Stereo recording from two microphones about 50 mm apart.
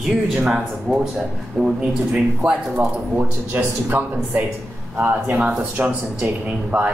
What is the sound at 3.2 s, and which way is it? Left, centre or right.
A man's voice, right.